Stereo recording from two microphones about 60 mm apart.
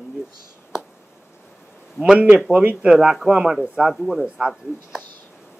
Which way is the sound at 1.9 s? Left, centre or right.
Centre.